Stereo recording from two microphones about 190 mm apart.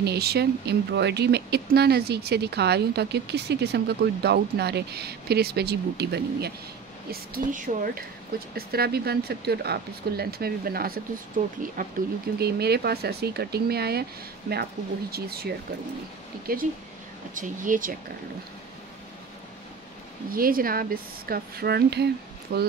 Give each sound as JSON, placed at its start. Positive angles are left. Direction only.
{"t": 0.0, "sound": "speech", "side_deg": -60}
{"t": 7.1, "sound": "speech", "side_deg": -50}
{"t": 12.4, "sound": "speech", "side_deg": -60}
{"t": 20.2, "sound": "speech", "side_deg": -50}